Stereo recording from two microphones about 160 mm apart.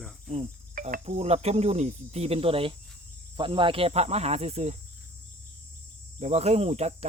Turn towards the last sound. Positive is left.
turn(degrees=-40)  # may be behind; listen again after turning